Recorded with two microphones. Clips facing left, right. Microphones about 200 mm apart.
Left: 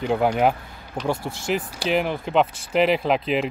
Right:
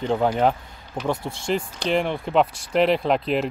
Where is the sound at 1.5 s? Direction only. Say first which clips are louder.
Even; 5° left (ahead or behind).